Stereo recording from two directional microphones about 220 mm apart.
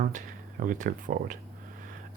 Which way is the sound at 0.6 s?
35° right (ahead or behind).